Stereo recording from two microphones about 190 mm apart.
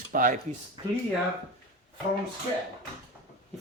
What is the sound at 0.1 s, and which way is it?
Speech, 45° right (ahead or behind).